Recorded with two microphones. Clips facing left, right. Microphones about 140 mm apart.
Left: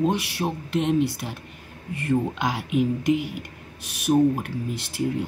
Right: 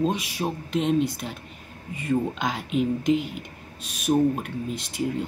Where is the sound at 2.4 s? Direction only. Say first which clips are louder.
Left 2 dB; 5° left (ahead or behind).